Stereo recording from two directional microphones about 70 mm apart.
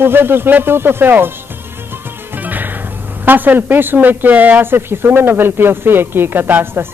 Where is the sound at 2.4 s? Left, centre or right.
Right.